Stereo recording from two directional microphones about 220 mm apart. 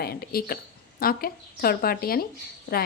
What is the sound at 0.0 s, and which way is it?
A woman's voice, 45° left (ahead or behind).